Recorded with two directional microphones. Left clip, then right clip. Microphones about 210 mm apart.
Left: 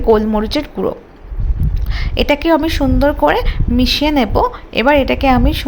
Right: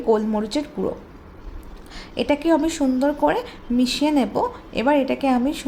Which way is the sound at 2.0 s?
20° left (ahead or behind).